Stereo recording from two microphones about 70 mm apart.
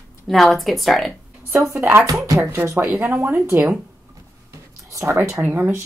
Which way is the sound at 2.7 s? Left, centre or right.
Right.